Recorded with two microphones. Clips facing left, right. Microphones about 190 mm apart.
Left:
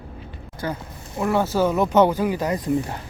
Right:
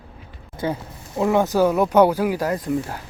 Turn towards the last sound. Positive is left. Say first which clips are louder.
# left 1 dB
turn(degrees=0)  # may be behind; listen again after turning